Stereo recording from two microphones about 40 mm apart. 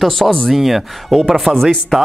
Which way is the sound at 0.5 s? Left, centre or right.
Centre.